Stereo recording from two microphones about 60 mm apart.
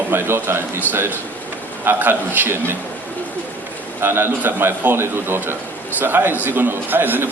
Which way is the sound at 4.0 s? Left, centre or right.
Right.